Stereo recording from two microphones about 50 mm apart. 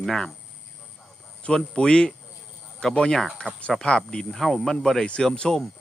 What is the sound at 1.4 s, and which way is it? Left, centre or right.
Speech, centre.